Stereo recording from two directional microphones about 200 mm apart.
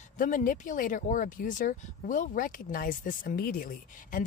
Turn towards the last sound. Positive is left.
turn(degrees=45)  # may be behind; listen again after turning